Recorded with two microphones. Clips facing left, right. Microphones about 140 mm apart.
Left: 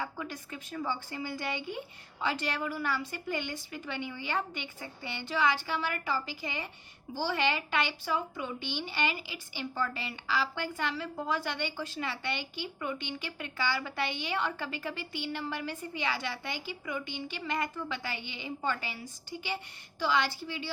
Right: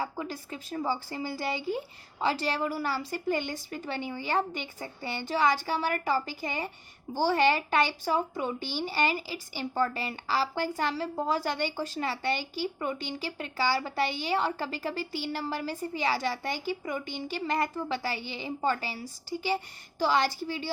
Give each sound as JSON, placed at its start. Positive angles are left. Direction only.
{"t": 0.0, "sound": "speech", "side_deg": -30}